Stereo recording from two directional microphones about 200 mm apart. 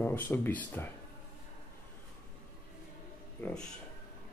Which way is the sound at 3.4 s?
5° left (ahead or behind).